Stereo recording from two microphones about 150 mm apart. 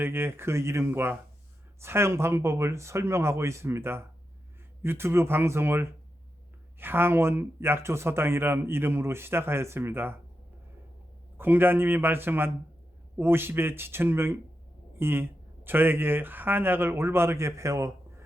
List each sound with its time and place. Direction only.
0.0 s speech: 15° right (ahead or behind)
11.3 s speech: 15° right (ahead or behind)